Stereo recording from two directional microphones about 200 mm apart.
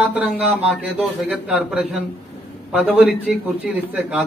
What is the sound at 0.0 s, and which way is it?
A man's voice, 5° right (ahead or behind).